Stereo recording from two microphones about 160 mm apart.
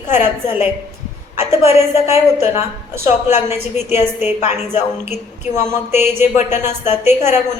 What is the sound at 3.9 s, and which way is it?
A woman's voice, 45° left (ahead or behind).